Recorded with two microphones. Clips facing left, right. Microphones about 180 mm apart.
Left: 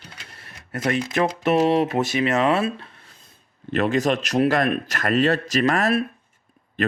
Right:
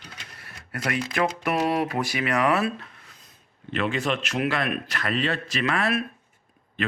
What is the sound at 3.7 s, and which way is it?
A man's voice, 40° left (ahead or behind).